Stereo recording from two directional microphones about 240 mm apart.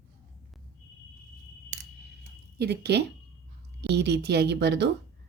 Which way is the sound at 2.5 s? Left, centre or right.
Right.